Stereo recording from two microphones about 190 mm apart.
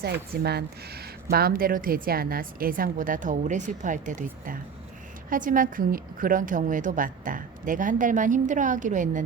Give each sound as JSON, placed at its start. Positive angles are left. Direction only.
{"t": 0.0, "sound": "speech", "side_deg": -60}